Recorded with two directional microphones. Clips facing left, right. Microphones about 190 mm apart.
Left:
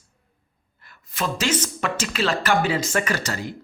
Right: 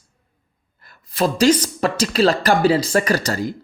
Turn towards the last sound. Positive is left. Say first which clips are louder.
# right 6 dB
turn(degrees=-40)  # may be behind; listen again after turning